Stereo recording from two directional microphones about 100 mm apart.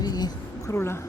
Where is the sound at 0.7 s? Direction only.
25° left (ahead or behind).